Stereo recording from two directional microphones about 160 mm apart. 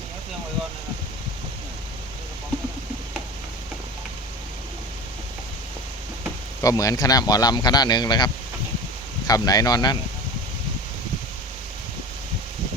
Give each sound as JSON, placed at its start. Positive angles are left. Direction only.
{"t": 6.6, "sound": "a man's voice", "side_deg": 20}